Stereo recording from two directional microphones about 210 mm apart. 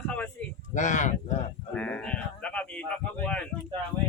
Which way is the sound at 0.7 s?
35° left (ahead or behind).